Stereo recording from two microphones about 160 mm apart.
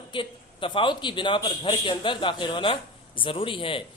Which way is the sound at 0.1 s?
30° left (ahead or behind).